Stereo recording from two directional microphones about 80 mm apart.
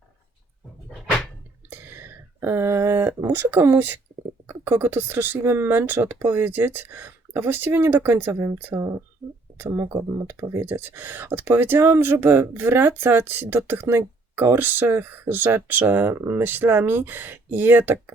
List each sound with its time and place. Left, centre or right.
1.7 s speech: right